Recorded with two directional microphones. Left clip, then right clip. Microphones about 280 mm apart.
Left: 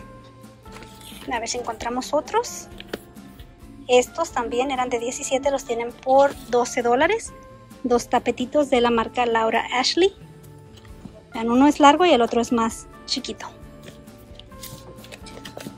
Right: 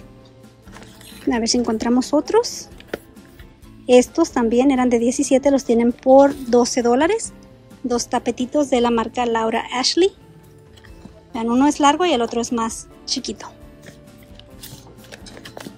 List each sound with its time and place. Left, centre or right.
1.3 s speech: right
4.1 s speech: right
5.1 s speech: right
5.4 s a woman's voice: right
11.3 s a woman's voice: centre